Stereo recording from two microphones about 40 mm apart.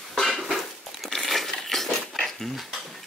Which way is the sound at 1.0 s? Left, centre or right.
Centre.